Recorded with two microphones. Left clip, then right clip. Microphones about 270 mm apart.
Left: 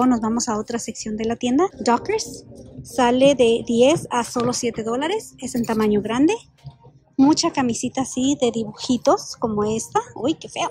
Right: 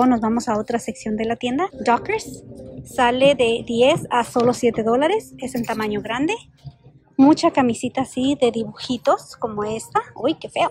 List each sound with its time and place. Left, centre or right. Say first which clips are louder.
0.0 s speech: right 2 dB; centre